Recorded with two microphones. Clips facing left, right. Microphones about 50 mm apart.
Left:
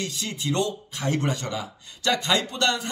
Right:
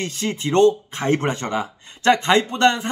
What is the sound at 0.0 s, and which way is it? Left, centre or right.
Speech, right.